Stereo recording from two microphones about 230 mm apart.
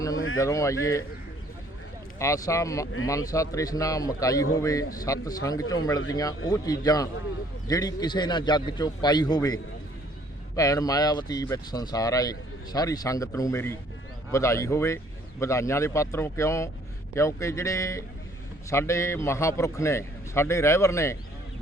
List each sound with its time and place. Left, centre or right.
0.3 s speech: centre
2.1 s speech: centre